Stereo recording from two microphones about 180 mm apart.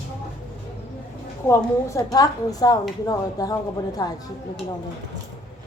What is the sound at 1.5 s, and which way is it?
A woman's voice, 15° left (ahead or behind).